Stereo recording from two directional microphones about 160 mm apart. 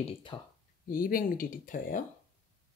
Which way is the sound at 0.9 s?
65° left (ahead or behind).